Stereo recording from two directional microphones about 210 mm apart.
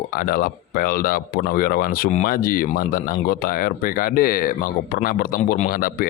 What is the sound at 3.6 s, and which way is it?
Speech, 40° left (ahead or behind).